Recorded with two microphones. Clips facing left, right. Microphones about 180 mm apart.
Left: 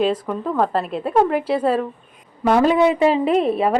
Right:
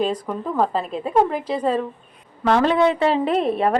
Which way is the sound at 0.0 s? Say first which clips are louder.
Left 3 dB; centre (ahead or behind).